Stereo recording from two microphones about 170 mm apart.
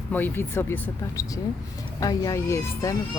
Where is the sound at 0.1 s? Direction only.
10° left (ahead or behind).